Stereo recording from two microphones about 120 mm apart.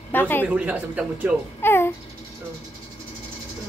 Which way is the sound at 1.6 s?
20° left (ahead or behind).